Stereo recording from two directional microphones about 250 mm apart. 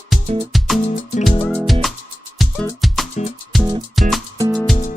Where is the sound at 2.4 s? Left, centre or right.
Centre.